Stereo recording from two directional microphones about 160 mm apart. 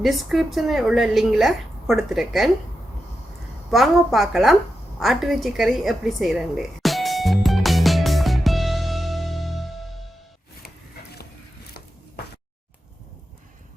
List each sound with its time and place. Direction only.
0.0 s a woman's voice: centre (ahead or behind)
3.7 s a woman's voice: centre (ahead or behind)
4.9 s a sound: centre (ahead or behind)